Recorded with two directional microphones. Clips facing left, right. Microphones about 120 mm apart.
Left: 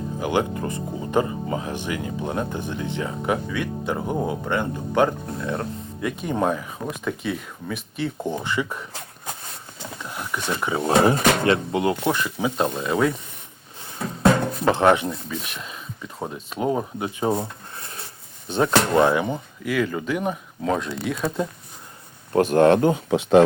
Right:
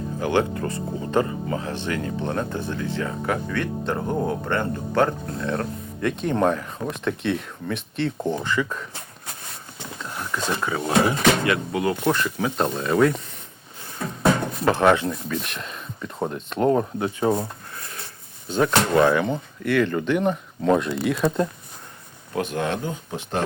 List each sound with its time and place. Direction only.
0.2 s speech: 15° left (ahead or behind)
10.0 s a sound: 10° left (ahead or behind)
10.6 s speech: 20° left (ahead or behind)
10.8 s speech: 40° left (ahead or behind)
11.4 s speech: 30° left (ahead or behind)
12.0 s speech: 10° left (ahead or behind)
14.7 s speech: 20° left (ahead or behind)
15.1 s speech: 5° left (ahead or behind)
17.4 s a sound: 25° left (ahead or behind)
18.4 s speech: 20° left (ahead or behind); by 21.4 s centre (ahead or behind)
22.3 s speech: 40° left (ahead or behind); by 23.4 s 90° left